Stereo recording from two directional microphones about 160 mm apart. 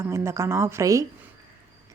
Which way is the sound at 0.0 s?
15° right (ahead or behind).